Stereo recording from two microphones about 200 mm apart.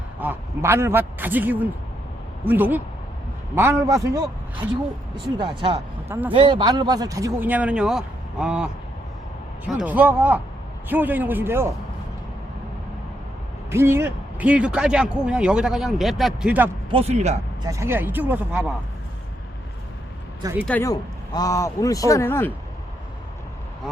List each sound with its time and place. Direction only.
0.2 s speech: 10° right (ahead or behind)
6.1 s speech: 10° right (ahead or behind)
6.3 s speech: 25° right (ahead or behind); by 8.7 s 5° right (ahead or behind)
9.7 s speech: 10° right (ahead or behind)
13.7 s speech: 10° right (ahead or behind)
16.9 s speech: 30° right (ahead or behind)
17.6 s speech: 15° right (ahead or behind)
20.4 s speech: 10° right (ahead or behind)
20.7 s a man's voice: 10° left (ahead or behind)